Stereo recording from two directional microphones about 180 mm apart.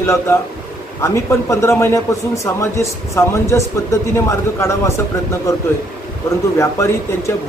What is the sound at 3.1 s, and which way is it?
A man's voice, 15° left (ahead or behind).